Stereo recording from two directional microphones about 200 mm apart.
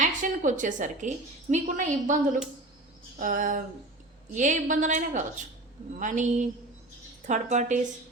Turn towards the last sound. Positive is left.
turn(degrees=-35)  # may be behind; listen again after turning